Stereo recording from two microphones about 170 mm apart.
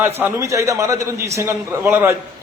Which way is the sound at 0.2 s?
15° right (ahead or behind).